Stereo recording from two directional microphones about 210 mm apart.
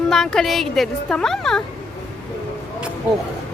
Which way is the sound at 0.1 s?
Centre (ahead or behind).